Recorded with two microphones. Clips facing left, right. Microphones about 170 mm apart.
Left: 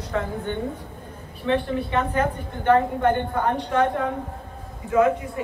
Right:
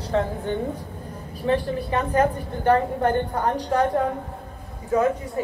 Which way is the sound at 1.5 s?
35° right (ahead or behind).